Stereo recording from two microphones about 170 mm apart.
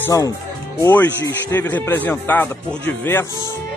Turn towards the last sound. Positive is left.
turn(degrees=10)  # may be behind; listen again after turning